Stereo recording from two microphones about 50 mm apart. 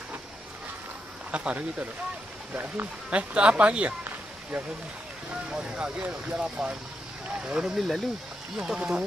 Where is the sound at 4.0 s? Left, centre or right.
Right.